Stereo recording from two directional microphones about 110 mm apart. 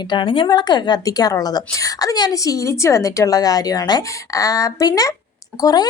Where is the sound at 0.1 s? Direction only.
50° left (ahead or behind).